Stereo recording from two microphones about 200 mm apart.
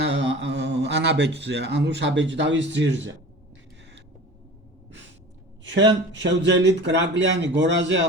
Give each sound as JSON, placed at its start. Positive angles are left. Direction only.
{"t": 0.0, "sound": "speech", "side_deg": -65}
{"t": 6.1, "sound": "speech", "side_deg": -65}